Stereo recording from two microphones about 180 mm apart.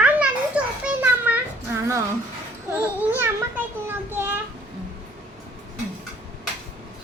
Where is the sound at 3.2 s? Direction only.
10° right (ahead or behind).